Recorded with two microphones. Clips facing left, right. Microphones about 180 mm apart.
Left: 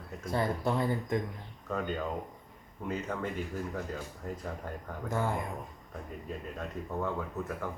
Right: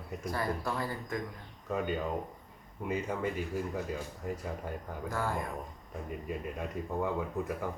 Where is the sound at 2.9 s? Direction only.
10° right (ahead or behind).